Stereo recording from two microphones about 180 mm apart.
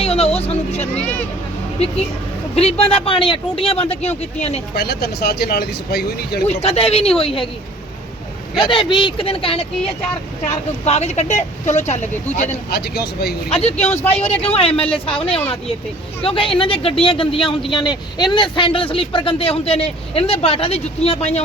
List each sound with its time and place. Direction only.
0.0 s speech: 35° left (ahead or behind)
2.6 s speech: 35° left (ahead or behind)
4.7 s speech: 60° left (ahead or behind)
6.5 s speech: 35° left (ahead or behind)
8.6 s speech: 25° left (ahead or behind)
12.7 s speech: 60° left (ahead or behind)
13.5 s speech: 35° left (ahead or behind)
16.2 s speech: 30° left (ahead or behind)